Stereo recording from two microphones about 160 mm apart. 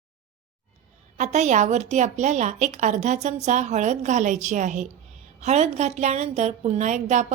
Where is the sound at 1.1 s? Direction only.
45° right (ahead or behind).